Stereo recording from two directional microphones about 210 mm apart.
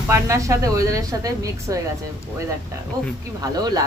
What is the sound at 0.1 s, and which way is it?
Speech, 15° right (ahead or behind).